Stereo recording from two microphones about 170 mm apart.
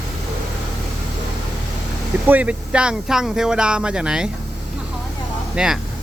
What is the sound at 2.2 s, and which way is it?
Speech, 10° right (ahead or behind).